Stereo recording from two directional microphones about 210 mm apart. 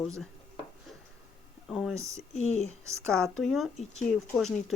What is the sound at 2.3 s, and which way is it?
Speech, 30° left (ahead or behind).